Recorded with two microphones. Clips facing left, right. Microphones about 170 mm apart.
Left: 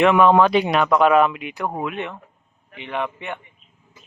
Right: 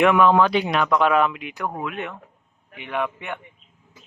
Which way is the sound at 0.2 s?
30° left (ahead or behind).